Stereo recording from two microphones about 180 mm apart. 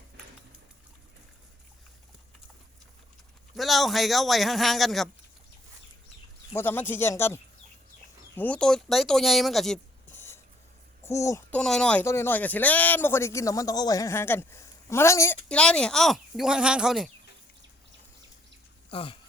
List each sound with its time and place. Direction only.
3.5 s speech: centre (ahead or behind)
6.5 s speech: 10° left (ahead or behind)
8.4 s speech: 5° left (ahead or behind)
10.2 s a sound: 15° left (ahead or behind)
11.0 s speech: 15° left (ahead or behind)
11.6 s speech: 5° left (ahead or behind)
18.9 s speech: 30° left (ahead or behind)